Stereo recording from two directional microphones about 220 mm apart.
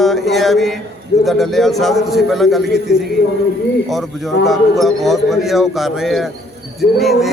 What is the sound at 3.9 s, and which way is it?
Speech, centre (ahead or behind).